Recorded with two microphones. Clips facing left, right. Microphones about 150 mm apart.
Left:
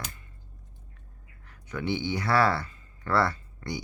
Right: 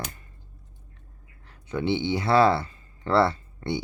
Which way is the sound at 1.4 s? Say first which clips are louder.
Right 5 dB; 30° right (ahead or behind).